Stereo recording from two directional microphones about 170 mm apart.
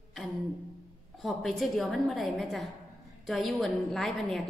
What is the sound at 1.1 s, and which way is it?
A woman's voice, centre (ahead or behind).